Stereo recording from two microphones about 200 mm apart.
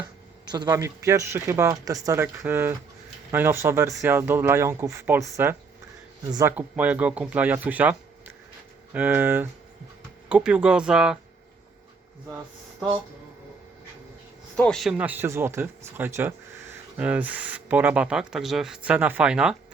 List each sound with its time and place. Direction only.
0.4 s speech: 20° right (ahead or behind); by 11.2 s 5° right (ahead or behind)
14.5 s speech: 5° left (ahead or behind)